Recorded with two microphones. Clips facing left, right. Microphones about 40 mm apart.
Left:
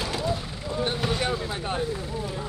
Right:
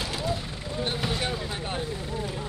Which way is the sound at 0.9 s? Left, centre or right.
Centre.